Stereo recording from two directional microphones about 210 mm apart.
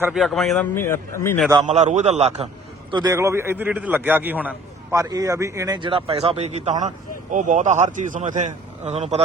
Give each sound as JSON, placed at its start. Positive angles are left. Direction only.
{"t": 0.0, "sound": "a man's voice", "side_deg": 0}
{"t": 1.6, "sound": "speech", "side_deg": -35}
{"t": 2.9, "sound": "a man's voice", "side_deg": -15}